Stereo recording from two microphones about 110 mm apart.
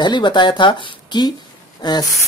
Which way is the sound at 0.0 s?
45° left (ahead or behind).